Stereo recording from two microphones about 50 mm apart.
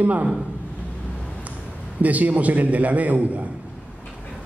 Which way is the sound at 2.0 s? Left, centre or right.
Right.